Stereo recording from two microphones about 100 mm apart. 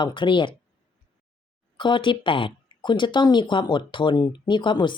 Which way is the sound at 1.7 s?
55° left (ahead or behind).